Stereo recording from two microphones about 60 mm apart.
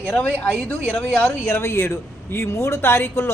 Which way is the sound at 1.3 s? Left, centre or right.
Left.